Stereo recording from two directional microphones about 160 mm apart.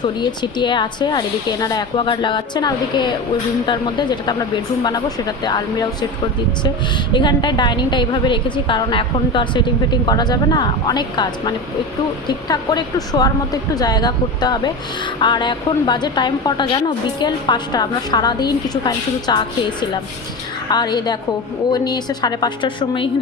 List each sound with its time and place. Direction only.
0.0 s a woman's voice: 30° left (ahead or behind)
7.1 s a woman's voice: 30° left (ahead or behind)
20.7 s a woman's voice: 25° left (ahead or behind)